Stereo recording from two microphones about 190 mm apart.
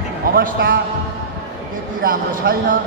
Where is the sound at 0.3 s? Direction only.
50° right (ahead or behind).